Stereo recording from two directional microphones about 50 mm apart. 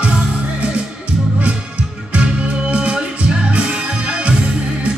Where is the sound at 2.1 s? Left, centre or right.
Right.